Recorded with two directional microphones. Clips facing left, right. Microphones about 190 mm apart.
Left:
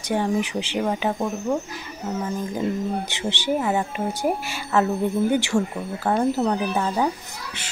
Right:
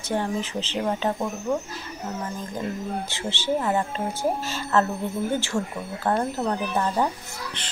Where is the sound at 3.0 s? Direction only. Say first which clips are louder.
Left 2 dB; 15° left (ahead or behind).